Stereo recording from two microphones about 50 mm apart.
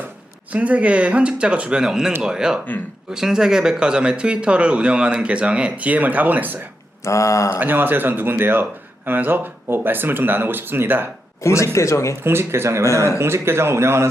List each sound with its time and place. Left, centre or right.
0.5 s speech: right
7.0 s speech: left
7.6 s speech: right
11.4 s speech: left
12.2 s a man's voice: right